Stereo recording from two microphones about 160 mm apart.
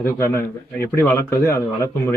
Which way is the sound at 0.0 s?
15° left (ahead or behind).